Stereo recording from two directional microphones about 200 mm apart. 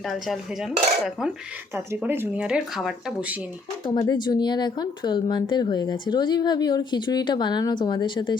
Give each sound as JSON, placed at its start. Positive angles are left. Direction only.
{"t": 0.0, "sound": "cutlery", "side_deg": 0}
{"t": 1.7, "sound": "speech", "side_deg": -10}
{"t": 3.8, "sound": "speech", "side_deg": 20}